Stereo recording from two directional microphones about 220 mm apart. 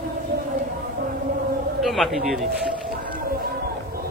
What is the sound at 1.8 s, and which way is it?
Speech, centre (ahead or behind).